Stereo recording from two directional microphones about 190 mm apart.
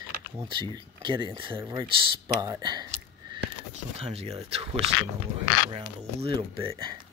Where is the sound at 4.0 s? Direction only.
35° right (ahead or behind).